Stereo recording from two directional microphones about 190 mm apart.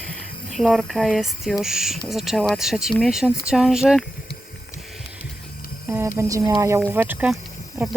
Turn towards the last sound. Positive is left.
turn(degrees=-5)  # may be behind; listen again after turning